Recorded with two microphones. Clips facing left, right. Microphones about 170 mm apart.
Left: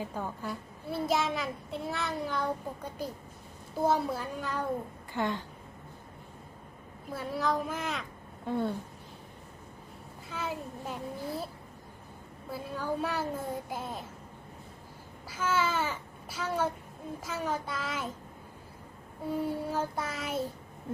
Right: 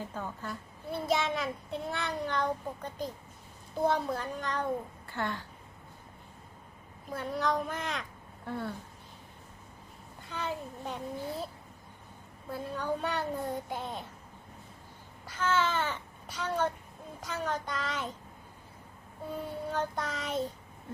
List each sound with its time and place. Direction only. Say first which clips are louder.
0.0 s a child's voice: left 3 dB; 10° left (ahead or behind)
5.1 s child singing: left 3 dB; 20° left (ahead or behind)
7.1 s a child's voice: even; centre (ahead or behind)
8.4 s speech: left 6 dB; 20° left (ahead or behind)
10.2 s a child's voice: even; 5° left (ahead or behind)
12.5 s a child's voice: right 1 dB; 5° left (ahead or behind)
15.3 s a child's voice: even; 5° left (ahead or behind)
19.5 s child singing: left 2 dB; 10° left (ahead or behind)